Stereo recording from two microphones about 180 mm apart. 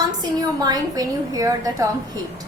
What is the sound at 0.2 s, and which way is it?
A woman's voice, 20° right (ahead or behind).